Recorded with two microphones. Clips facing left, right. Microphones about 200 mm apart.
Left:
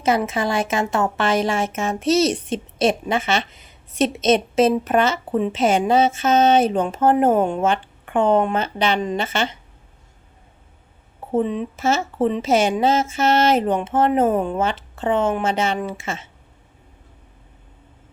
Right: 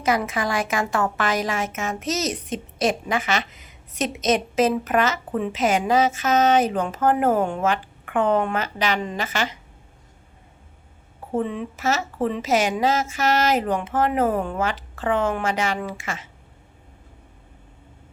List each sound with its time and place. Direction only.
0.0 s a woman's voice: 25° left (ahead or behind)
11.3 s a woman's voice: 20° left (ahead or behind)